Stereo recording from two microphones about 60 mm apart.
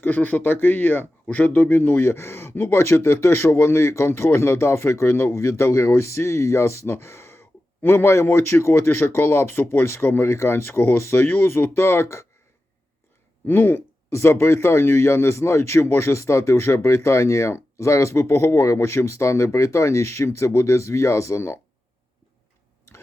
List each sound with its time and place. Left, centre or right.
0.0 s speech: left
13.5 s speech: left
14.1 s speech: left